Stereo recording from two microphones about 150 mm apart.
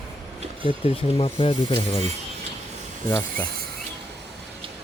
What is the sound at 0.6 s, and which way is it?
Speech, 40° left (ahead or behind).